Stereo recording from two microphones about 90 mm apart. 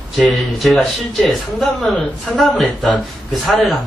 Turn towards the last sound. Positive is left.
turn(degrees=0)  # may be behind; listen again after turning